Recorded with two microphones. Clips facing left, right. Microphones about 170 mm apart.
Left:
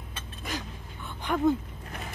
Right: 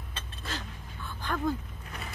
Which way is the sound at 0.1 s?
15° left (ahead or behind).